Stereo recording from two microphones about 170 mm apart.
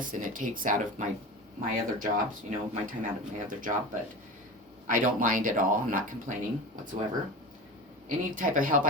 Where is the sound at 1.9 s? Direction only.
55° right (ahead or behind).